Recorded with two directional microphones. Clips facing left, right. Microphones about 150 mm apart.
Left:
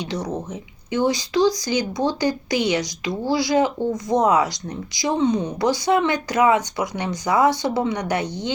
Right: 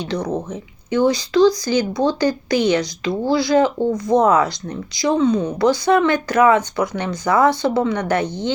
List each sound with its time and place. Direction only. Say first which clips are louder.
0.9 s speech: right 4 dB; 20° left (ahead or behind)